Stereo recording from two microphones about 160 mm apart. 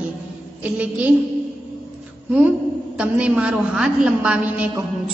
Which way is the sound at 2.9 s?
5° right (ahead or behind).